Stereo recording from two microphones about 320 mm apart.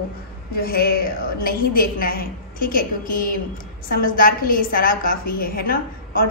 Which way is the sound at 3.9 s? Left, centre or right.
Left.